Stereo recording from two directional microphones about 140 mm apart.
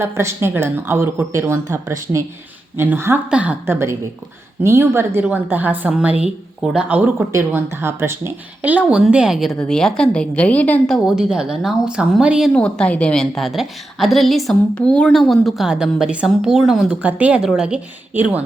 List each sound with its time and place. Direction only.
0.0 s a woman's voice: 20° right (ahead or behind)
12.5 s a woman's voice: 10° left (ahead or behind); by 18.4 s 10° right (ahead or behind)